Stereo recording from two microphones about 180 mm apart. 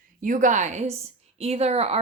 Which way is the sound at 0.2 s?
45° right (ahead or behind).